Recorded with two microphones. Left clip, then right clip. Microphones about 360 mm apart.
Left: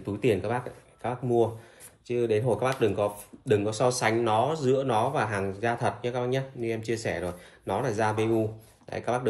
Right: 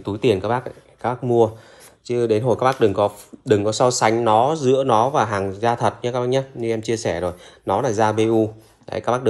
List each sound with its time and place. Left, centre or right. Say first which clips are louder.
0.3 s speech: right 8 dB; centre